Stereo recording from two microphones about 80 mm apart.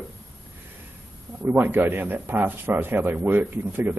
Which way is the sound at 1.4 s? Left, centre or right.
Right.